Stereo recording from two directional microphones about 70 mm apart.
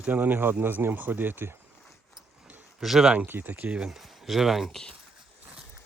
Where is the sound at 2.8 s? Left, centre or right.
Centre.